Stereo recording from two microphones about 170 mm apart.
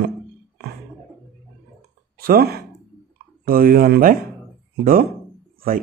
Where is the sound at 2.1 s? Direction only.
60° right (ahead or behind).